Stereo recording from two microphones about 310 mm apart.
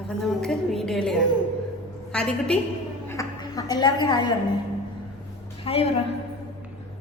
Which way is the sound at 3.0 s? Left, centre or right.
Centre.